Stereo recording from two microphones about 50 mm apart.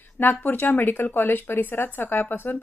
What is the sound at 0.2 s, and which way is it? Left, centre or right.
Speech, left.